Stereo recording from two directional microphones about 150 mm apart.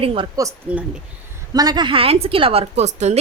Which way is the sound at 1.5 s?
30° right (ahead or behind).